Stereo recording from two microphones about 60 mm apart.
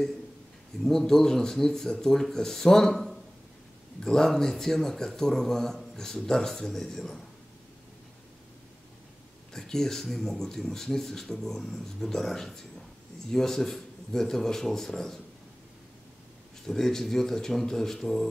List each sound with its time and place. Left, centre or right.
0.8 s speech: centre
9.5 s a man's voice: centre
16.6 s speech: centre